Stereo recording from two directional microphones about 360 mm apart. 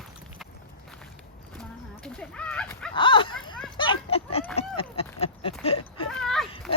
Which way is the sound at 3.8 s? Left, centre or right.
Centre.